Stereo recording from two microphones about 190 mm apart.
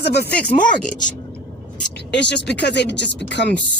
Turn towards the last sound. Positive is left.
turn(degrees=65)  # may be behind; listen again after turning